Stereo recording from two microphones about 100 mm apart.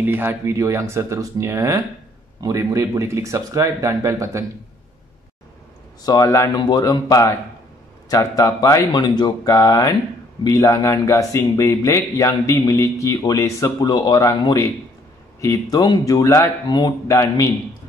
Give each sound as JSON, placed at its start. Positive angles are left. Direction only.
{"t": 0.0, "sound": "speech", "side_deg": -20}
{"t": 6.0, "sound": "speech", "side_deg": 35}
{"t": 17.1, "sound": "speech", "side_deg": 30}